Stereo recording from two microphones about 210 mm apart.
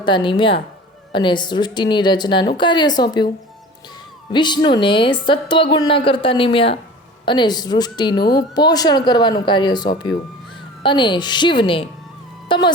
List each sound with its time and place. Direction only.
0.0 s a woman's voice: 25° left (ahead or behind)
4.3 s a woman's voice: 20° left (ahead or behind)